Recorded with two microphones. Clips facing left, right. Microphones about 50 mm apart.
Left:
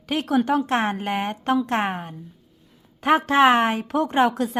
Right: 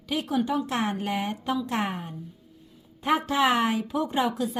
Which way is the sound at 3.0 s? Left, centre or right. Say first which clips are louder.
Left 6 dB; left.